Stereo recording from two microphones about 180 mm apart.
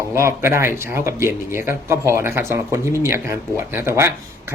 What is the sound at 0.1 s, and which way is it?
Speech, 15° right (ahead or behind).